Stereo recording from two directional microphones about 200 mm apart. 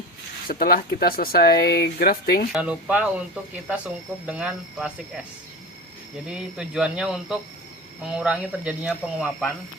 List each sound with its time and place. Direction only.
0.4 s speech: 50° left (ahead or behind)
2.5 s speech: 5° right (ahead or behind)
4.3 s speech: 5° right (ahead or behind)
6.2 s speech: 5° right (ahead or behind)